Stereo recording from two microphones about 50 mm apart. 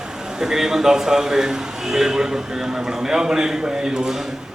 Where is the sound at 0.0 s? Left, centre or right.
Centre.